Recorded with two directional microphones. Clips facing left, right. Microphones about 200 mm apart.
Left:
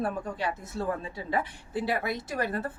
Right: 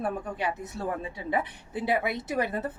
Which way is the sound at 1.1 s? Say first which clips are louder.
Right 1 dB; 20° right (ahead or behind).